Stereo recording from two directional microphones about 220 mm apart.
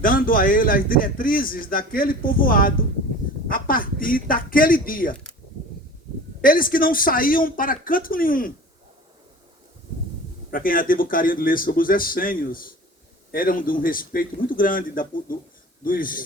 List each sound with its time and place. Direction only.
0.0 s speech: 40° left (ahead or behind)
6.4 s speech: 40° left (ahead or behind)
10.5 s speech: 40° left (ahead or behind)